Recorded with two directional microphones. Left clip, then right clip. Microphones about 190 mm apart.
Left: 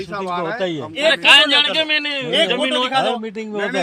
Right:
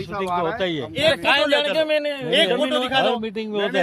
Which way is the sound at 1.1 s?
65° right (ahead or behind).